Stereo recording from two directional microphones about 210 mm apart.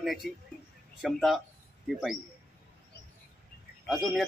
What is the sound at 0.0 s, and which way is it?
A man's voice, centre (ahead or behind).